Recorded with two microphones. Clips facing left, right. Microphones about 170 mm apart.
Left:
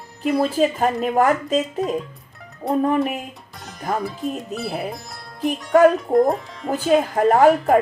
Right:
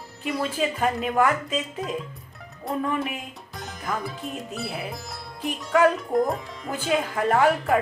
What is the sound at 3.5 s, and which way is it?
Music, centre (ahead or behind).